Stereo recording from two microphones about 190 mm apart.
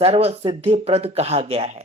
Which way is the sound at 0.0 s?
30° right (ahead or behind).